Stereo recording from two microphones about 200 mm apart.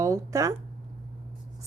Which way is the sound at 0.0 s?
15° right (ahead or behind).